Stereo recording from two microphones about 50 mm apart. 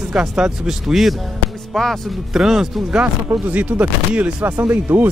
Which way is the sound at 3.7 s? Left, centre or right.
Right.